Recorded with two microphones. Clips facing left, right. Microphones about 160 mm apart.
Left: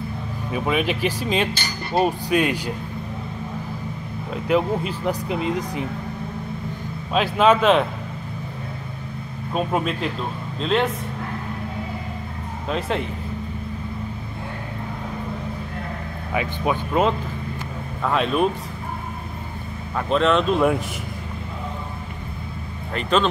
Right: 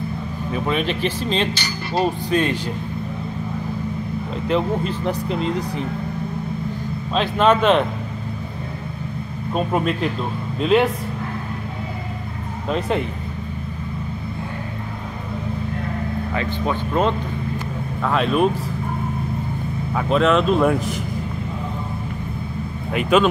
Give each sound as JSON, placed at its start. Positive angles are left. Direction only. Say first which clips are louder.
{"t": 0.5, "sound": "speech", "louder": "even", "side_deg": 10}
{"t": 1.5, "sound": "speech", "louder": "even", "side_deg": 50}
{"t": 2.0, "sound": "speech", "louder": "right 1 dB", "side_deg": 10}
{"t": 4.5, "sound": "speech", "louder": "even", "side_deg": 5}
{"t": 7.2, "sound": "speech", "louder": "even", "side_deg": 5}
{"t": 9.5, "sound": "speech", "louder": "right 2 dB", "side_deg": 0}
{"t": 12.6, "sound": "speech", "louder": "right 3 dB", "side_deg": 0}
{"t": 16.3, "sound": "speech", "louder": "left 2 dB", "side_deg": 10}
{"t": 20.0, "sound": "speech", "louder": "right 2 dB", "side_deg": 0}
{"t": 22.9, "sound": "speech", "louder": "right 4 dB", "side_deg": -10}